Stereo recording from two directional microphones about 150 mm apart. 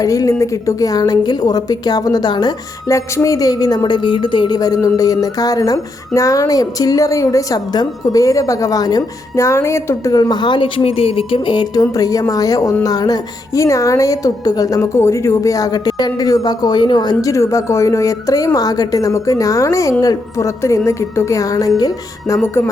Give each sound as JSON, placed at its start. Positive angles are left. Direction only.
{"t": 0.0, "sound": "speech", "side_deg": 20}
{"t": 22.4, "sound": "music", "side_deg": 15}